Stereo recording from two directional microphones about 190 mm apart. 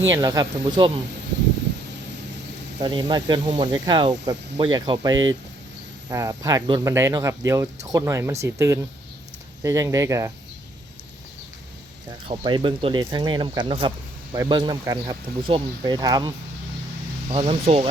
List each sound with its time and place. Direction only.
0.1 s speech: 20° right (ahead or behind)
2.8 s speech: 20° right (ahead or behind)
12.3 s speech: 25° right (ahead or behind)
17.3 s speech: 35° right (ahead or behind)